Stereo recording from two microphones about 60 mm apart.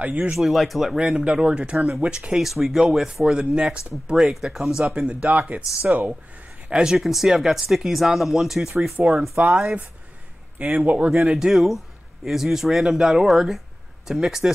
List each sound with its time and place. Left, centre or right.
0.0 s speech: right
0.4 s speech: centre
0.9 s speech: centre
2.4 s speech: centre
4.9 s speech: centre
6.7 s speech: centre
9.0 s speech: right
11.1 s speech: centre